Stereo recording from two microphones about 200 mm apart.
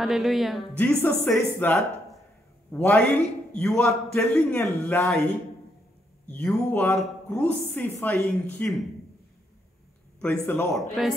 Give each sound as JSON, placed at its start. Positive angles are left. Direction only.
{"t": 0.0, "sound": "a man's voice", "side_deg": 0}
{"t": 2.8, "sound": "a man's voice", "side_deg": 5}
{"t": 6.2, "sound": "a man's voice", "side_deg": 5}
{"t": 10.2, "sound": "a man's voice", "side_deg": 5}